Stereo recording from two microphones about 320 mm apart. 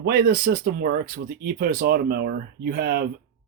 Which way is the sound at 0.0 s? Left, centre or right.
Right.